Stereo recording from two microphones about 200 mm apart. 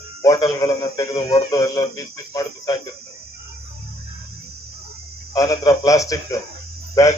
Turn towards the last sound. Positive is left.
turn(degrees=15)  # may be behind; listen again after turning